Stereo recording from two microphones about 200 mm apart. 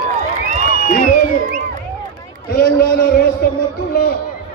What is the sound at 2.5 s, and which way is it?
A man's voice, 50° left (ahead or behind).